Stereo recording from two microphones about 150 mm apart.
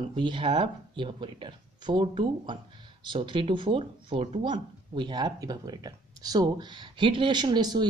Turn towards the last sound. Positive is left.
turn(degrees=-30)  # may be behind; listen again after turning